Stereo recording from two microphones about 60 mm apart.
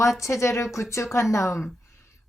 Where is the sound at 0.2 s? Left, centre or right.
Left.